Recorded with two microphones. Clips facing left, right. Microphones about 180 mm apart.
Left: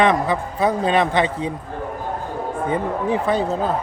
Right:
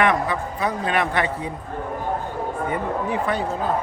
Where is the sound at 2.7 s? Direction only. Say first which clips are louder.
Left 5 dB; 30° left (ahead or behind).